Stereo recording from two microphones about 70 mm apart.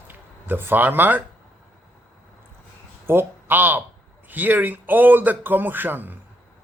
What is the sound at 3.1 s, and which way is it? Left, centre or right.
A man's voice, right.